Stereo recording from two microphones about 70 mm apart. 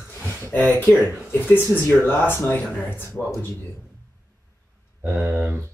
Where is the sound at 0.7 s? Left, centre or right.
Left.